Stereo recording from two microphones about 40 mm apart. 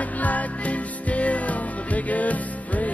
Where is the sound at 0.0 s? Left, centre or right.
Left.